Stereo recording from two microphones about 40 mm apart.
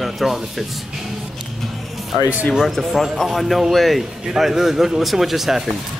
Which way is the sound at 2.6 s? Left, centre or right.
Centre.